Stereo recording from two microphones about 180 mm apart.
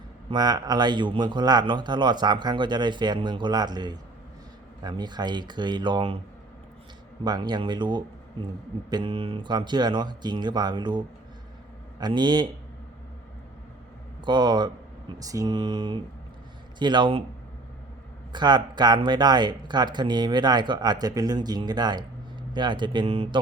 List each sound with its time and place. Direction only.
0.3 s speech: 25° right (ahead or behind)
7.3 s speech: 25° right (ahead or behind)
14.3 s speech: 25° right (ahead or behind)
18.3 s speech: 25° right (ahead or behind)